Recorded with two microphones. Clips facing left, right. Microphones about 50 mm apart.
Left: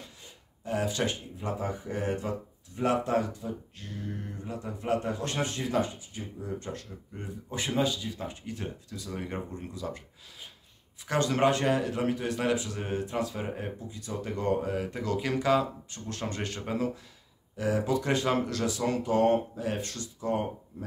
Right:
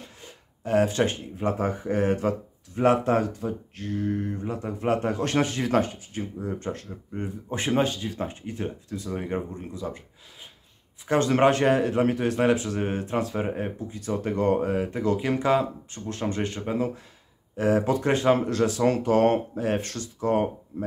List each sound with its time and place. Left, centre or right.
0.2 s a sound: right
0.9 s speech: right
2.8 s a man's voice: right
9.1 s speech: centre
11.1 s a man's voice: right
14.9 s speech: centre
17.6 s a man's voice: right
18.7 s speech: right
19.0 s speech: right